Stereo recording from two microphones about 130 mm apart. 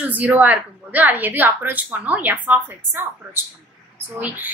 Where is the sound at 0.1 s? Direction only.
15° right (ahead or behind).